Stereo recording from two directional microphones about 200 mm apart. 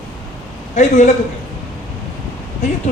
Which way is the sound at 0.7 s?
35° left (ahead or behind).